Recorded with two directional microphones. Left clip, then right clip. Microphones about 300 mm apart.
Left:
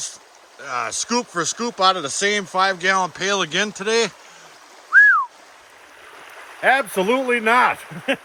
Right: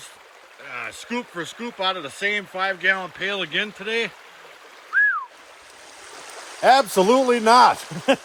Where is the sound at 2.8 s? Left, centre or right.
Left.